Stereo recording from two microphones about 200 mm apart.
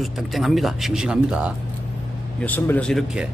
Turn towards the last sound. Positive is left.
turn(degrees=0)  # may be behind; listen again after turning